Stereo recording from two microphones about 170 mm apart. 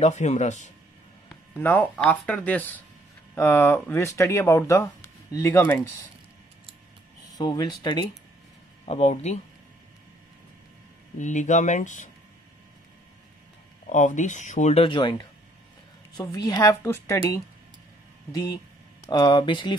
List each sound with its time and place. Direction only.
0.0 s speech: 40° left (ahead or behind)
1.5 s speech: 10° left (ahead or behind)
7.3 s a woman's voice: 25° left (ahead or behind)
8.8 s speech: 40° left (ahead or behind)
11.1 s speech: 45° left (ahead or behind)
13.8 s a woman's voice: 45° left (ahead or behind); by 17.2 s 15° left (ahead or behind)
18.3 s a woman's voice: 20° left (ahead or behind)